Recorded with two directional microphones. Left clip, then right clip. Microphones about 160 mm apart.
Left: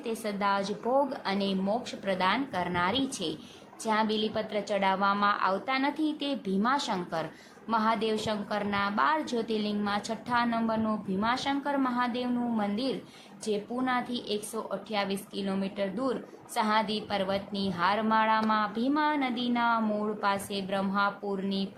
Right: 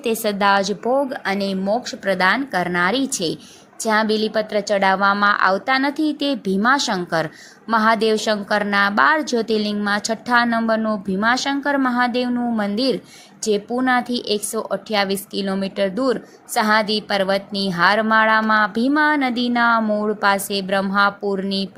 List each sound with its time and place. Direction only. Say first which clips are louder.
0.0 s a woman's voice: right 12 dB; 50° right (ahead or behind)
0.9 s a woman's voice: right 8 dB; 35° right (ahead or behind)